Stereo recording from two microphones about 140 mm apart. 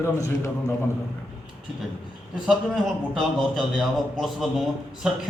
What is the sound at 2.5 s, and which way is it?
A man's voice, centre (ahead or behind).